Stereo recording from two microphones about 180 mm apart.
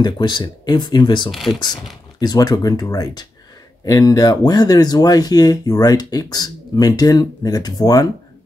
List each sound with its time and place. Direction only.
0.0 s speech: 25° left (ahead or behind)
1.3 s speech: centre (ahead or behind)
2.1 s speech: 20° left (ahead or behind)